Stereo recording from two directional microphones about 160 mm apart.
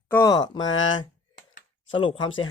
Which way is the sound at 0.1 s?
20° left (ahead or behind).